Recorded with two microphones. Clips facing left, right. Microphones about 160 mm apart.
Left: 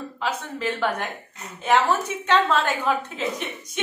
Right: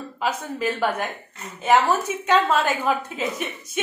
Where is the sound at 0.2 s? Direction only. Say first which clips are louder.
Right 3 dB; 10° right (ahead or behind).